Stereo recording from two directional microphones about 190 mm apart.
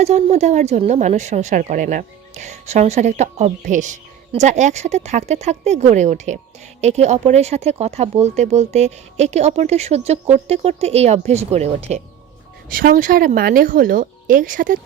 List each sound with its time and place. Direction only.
0.0 s speech: 35° right (ahead or behind)
12.6 s speech: 50° right (ahead or behind)